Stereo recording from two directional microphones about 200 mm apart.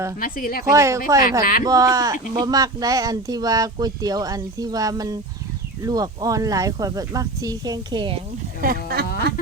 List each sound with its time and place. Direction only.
0.2 s speech: 45° left (ahead or behind)
0.6 s speech: 15° right (ahead or behind)
8.6 s speech: 50° right (ahead or behind)